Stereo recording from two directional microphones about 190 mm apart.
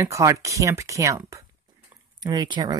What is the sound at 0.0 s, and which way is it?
Speech, 15° right (ahead or behind).